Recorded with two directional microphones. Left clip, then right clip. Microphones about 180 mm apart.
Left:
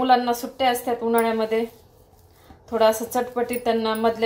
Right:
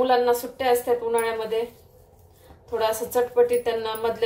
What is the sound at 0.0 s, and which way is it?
A woman's voice, 35° left (ahead or behind).